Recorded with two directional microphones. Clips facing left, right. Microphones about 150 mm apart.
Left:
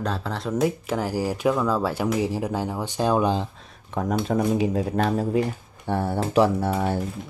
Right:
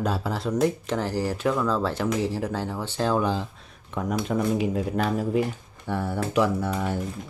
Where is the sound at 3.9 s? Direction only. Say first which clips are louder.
Left 2 dB; 45° left (ahead or behind).